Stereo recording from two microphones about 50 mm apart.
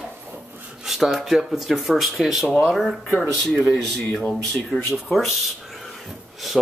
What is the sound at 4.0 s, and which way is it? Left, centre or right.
Speech, left.